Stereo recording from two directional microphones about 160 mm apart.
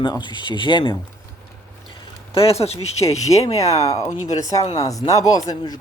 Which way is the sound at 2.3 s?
35° left (ahead or behind).